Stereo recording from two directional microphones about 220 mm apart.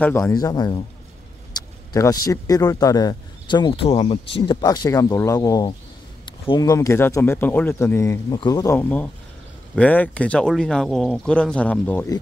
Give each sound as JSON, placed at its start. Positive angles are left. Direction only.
{"t": 0.0, "sound": "speech", "side_deg": 10}